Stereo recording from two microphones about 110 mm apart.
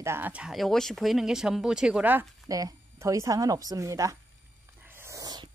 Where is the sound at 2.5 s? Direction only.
30° right (ahead or behind).